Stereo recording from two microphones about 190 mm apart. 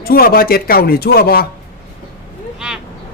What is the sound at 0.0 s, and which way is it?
Speech, 50° left (ahead or behind).